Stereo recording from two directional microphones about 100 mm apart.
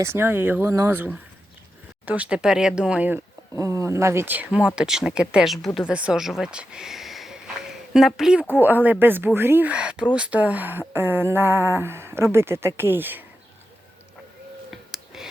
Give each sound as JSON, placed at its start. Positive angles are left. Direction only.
{"t": 0.0, "sound": "speech", "side_deg": -25}
{"t": 3.5, "sound": "speech", "side_deg": -30}
{"t": 8.5, "sound": "speech", "side_deg": -20}
{"t": 14.7, "sound": "a sound", "side_deg": -5}